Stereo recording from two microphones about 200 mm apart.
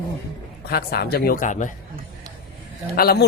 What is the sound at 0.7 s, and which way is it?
A man's voice, 50° left (ahead or behind).